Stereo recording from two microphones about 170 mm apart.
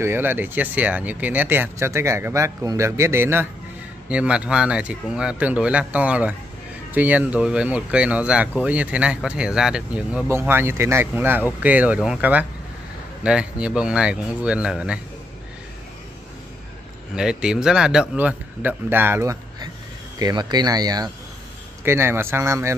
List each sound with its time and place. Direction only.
0.0 s speech: 10° right (ahead or behind)
17.1 s speech: 5° right (ahead or behind)